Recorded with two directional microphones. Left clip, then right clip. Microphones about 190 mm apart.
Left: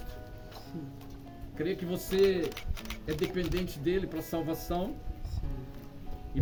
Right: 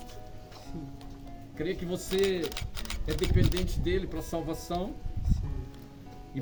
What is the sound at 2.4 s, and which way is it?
Speech, 45° right (ahead or behind).